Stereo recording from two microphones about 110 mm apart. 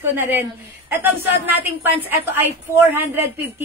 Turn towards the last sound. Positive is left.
turn(degrees=-20)  # may be behind; listen again after turning